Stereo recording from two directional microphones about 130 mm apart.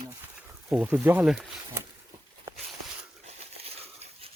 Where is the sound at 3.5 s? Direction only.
50° right (ahead or behind).